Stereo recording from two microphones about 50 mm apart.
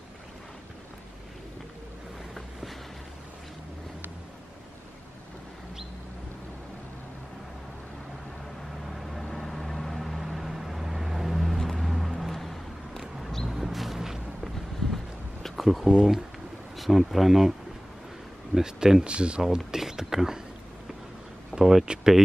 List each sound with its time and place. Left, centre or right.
8.9 s vehicle: centre
13.2 s a sound: centre
15.9 s speech: centre
16.7 s speech: centre; by 19.4 s right
19.5 s a sound: centre
21.5 s speech: centre